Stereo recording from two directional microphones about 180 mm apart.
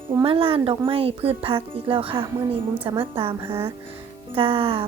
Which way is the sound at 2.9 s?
30° right (ahead or behind).